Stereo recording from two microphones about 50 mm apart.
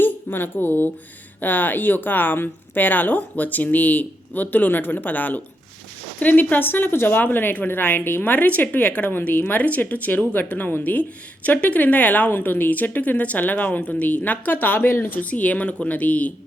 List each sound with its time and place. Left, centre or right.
0.0 s a woman's voice: left
9.0 s speech: left
15.2 s speech: left